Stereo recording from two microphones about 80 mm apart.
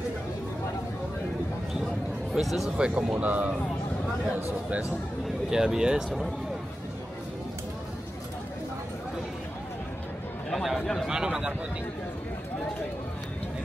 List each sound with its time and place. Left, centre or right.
2.3 s speech: centre
2.9 s speech: centre
5.5 s speech: centre
10.5 s chatter: centre
11.1 s speech: centre